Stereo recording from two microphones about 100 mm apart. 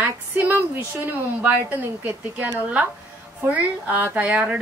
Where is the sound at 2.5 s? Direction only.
15° right (ahead or behind).